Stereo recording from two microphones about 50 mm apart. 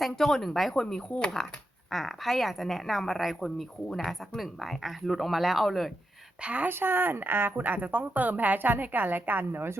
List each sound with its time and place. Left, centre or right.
0.0 s speech: centre
6.4 s a woman's voice: right
6.7 s speech: right